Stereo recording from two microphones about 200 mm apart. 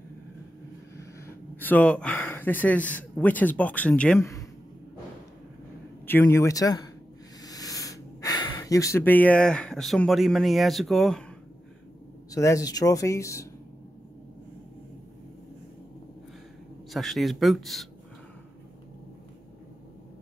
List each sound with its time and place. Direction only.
1.2 s speech: 10° left (ahead or behind)
6.0 s speech: 10° left (ahead or behind)
12.3 s speech: 15° left (ahead or behind)
16.9 s speech: centre (ahead or behind)